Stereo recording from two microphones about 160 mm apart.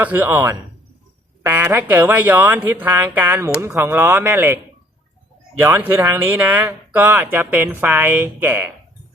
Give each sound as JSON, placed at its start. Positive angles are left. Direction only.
{"t": 0.0, "sound": "speech", "side_deg": -10}
{"t": 5.6, "sound": "speech", "side_deg": -15}